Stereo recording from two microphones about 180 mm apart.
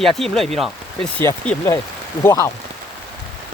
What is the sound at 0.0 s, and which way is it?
Speech, centre (ahead or behind).